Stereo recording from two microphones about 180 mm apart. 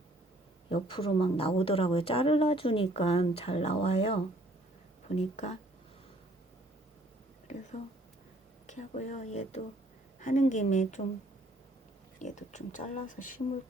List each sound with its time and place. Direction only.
0.7 s a woman's voice: 30° left (ahead or behind)
8.6 s a woman's voice: 40° left (ahead or behind)
12.2 s speech: 40° left (ahead or behind)